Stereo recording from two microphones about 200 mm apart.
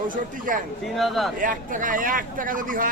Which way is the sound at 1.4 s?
40° right (ahead or behind).